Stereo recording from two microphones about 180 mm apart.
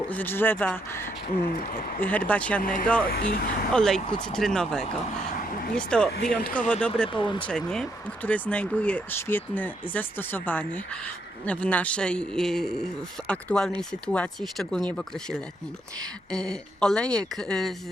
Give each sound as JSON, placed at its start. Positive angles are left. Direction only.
{"t": 0.1, "sound": "speech", "side_deg": 10}
{"t": 2.6, "sound": "speech", "side_deg": 50}
{"t": 2.8, "sound": "speech", "side_deg": 10}
{"t": 3.1, "sound": "speech", "side_deg": 60}
{"t": 3.7, "sound": "speech", "side_deg": 5}
{"t": 7.2, "sound": "speech", "side_deg": 25}
{"t": 7.4, "sound": "speech", "side_deg": 5}